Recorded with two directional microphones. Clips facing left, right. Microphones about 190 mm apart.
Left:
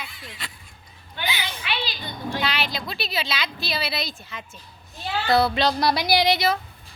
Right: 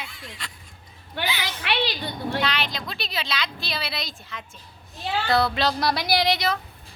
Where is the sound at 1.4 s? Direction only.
70° right (ahead or behind).